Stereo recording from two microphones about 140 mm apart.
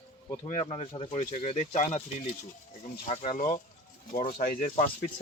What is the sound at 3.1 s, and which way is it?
Speech, 60° left (ahead or behind).